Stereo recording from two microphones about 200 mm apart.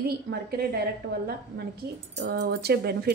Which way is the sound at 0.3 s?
50° right (ahead or behind).